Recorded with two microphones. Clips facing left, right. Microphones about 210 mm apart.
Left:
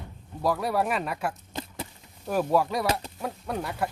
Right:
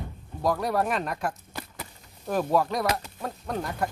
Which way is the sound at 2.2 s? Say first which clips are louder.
Even; 10° left (ahead or behind).